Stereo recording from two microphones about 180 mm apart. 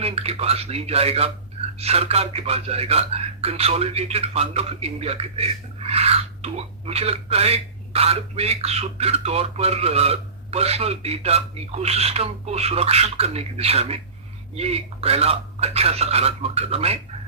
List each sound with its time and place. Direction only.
0.0 s speech: 35° right (ahead or behind)